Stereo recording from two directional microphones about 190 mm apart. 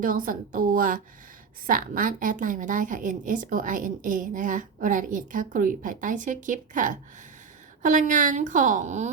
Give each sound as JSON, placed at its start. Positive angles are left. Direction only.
{"t": 0.0, "sound": "a woman's voice", "side_deg": -45}